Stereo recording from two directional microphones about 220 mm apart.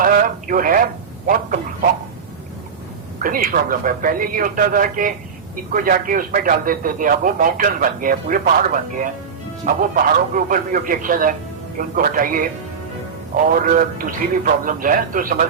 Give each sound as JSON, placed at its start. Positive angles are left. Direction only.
{"t": 0.0, "sound": "speech", "side_deg": -40}
{"t": 3.2, "sound": "a man's voice", "side_deg": -40}